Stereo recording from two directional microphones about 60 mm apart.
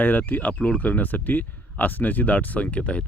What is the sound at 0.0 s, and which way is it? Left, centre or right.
Speech, left.